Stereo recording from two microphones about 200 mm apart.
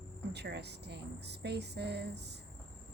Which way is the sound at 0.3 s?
55° right (ahead or behind).